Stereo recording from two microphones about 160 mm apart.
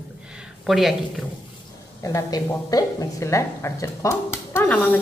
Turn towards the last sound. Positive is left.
turn(degrees=10)  # may be behind; listen again after turning